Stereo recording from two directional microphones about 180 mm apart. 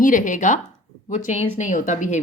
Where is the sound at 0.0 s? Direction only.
45° left (ahead or behind).